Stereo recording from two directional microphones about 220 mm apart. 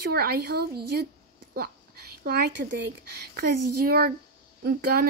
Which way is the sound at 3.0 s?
45° right (ahead or behind).